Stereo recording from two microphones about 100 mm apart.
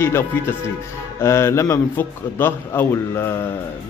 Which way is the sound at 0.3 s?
20° left (ahead or behind).